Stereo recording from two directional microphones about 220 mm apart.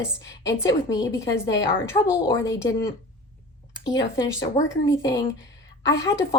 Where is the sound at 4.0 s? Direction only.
15° left (ahead or behind).